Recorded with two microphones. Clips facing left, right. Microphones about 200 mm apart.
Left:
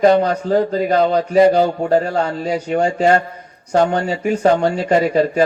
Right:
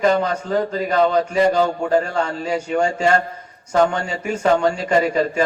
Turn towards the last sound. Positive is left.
turn(degrees=35)  # may be behind; listen again after turning